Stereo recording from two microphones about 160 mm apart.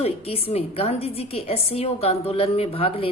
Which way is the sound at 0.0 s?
35° left (ahead or behind).